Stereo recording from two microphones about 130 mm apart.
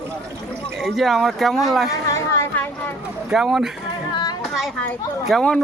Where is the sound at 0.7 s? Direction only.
Centre (ahead or behind).